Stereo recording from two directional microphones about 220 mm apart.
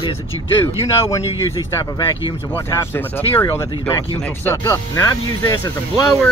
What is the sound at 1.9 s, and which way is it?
Speech, 20° left (ahead or behind).